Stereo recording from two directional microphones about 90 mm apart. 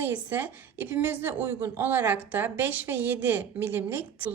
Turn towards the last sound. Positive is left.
turn(degrees=-25)  # may be behind; listen again after turning